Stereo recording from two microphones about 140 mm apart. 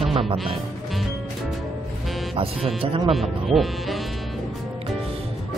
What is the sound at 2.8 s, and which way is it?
Speech, 40° right (ahead or behind).